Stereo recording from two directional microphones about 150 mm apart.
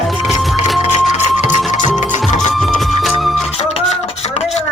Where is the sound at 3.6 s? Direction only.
45° left (ahead or behind).